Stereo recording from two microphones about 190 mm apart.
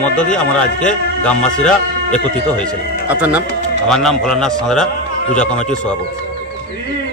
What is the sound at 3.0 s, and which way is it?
Speech, 10° right (ahead or behind).